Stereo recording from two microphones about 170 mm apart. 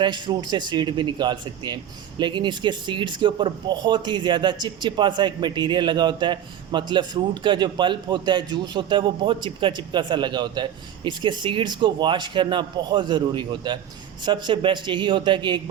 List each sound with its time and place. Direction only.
0.0 s speech: 25° right (ahead or behind)